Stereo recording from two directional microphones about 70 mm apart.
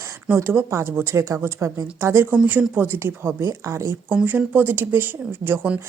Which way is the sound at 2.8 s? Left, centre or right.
Right.